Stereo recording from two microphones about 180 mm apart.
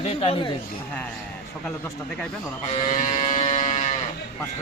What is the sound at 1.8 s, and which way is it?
Speech, 10° left (ahead or behind).